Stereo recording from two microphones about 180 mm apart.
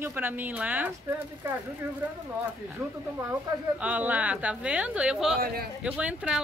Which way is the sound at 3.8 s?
10° right (ahead or behind).